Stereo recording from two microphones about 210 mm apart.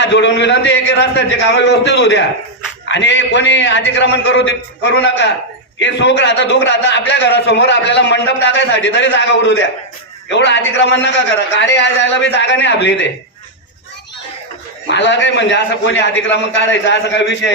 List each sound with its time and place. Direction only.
0.0 s a man's voice: 55° left (ahead or behind)
14.8 s a man's voice: 55° left (ahead or behind)